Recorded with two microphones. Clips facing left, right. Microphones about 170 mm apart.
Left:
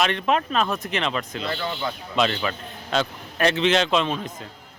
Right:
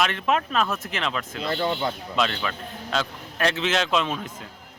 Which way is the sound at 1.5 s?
30° right (ahead or behind).